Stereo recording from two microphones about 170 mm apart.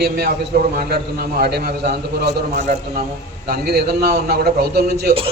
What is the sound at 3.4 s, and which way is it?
A man's voice, 65° right (ahead or behind).